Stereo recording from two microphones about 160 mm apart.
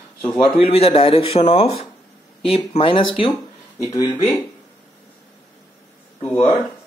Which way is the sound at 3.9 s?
25° left (ahead or behind).